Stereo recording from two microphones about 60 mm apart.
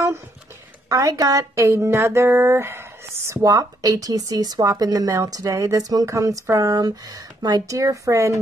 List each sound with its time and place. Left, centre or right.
0.8 s speech: right
3.4 s speech: right
6.5 s speech: right
7.4 s a woman's voice: right